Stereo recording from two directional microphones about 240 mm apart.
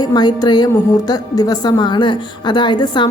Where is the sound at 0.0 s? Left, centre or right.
Centre.